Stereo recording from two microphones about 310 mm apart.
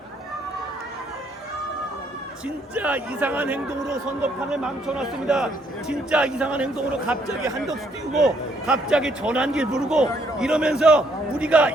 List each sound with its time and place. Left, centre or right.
2.7 s a man's voice: centre